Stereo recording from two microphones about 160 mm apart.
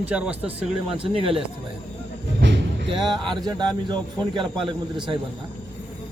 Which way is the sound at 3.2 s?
25° right (ahead or behind).